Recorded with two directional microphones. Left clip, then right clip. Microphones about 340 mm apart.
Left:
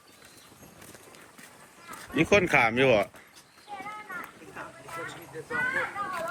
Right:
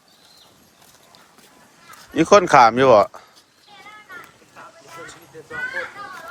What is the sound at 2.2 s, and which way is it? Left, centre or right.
Speech, right.